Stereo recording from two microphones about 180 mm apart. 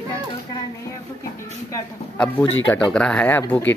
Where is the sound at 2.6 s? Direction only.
5° left (ahead or behind).